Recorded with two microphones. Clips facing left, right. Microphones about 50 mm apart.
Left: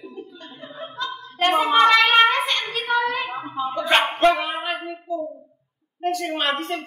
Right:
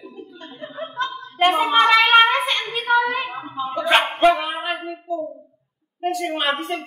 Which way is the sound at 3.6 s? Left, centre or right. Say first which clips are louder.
Right 2 dB; centre.